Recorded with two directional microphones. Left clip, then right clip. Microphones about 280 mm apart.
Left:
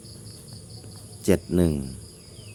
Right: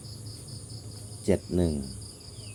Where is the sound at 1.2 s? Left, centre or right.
Left.